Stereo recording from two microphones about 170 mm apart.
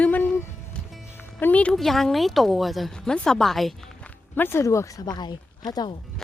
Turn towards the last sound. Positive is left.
turn(degrees=25)  # may be behind; listen again after turning